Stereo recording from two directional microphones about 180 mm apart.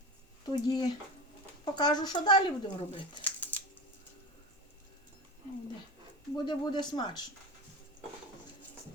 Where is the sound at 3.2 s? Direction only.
10° left (ahead or behind).